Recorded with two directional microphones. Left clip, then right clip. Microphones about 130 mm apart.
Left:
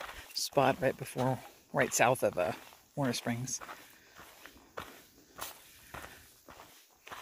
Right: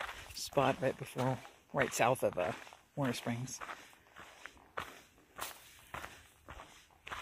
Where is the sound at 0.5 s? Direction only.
35° left (ahead or behind).